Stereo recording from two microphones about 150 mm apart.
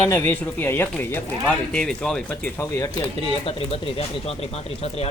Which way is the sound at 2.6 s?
20° left (ahead or behind).